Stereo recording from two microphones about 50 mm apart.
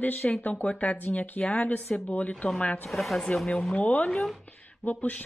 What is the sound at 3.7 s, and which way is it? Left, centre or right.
Speech, left.